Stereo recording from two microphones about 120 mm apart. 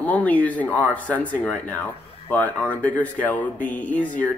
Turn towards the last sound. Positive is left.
turn(degrees=15)  # may be behind; listen again after turning